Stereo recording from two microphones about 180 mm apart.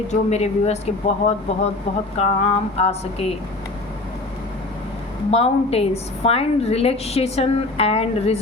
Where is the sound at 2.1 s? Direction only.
35° left (ahead or behind).